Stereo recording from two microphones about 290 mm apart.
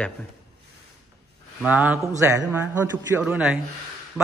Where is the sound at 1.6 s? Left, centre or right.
Centre.